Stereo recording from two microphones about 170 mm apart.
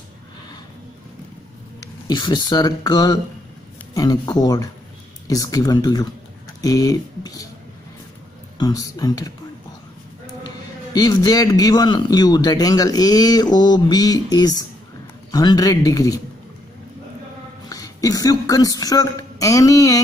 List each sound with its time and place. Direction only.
2.0 s a man's voice: 25° left (ahead or behind)
8.5 s a man's voice: 20° left (ahead or behind)
10.4 s a man's voice: 25° left (ahead or behind)
17.6 s speech: 20° left (ahead or behind)